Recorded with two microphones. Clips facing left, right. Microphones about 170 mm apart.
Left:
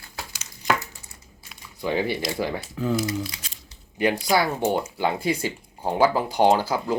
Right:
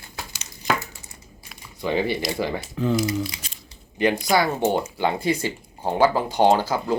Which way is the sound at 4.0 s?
10° left (ahead or behind).